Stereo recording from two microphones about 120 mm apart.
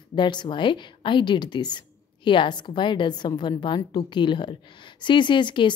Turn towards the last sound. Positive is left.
turn(degrees=40)  # may be behind; listen again after turning